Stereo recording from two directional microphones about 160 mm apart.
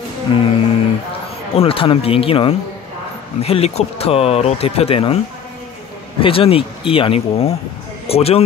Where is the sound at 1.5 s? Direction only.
35° left (ahead or behind).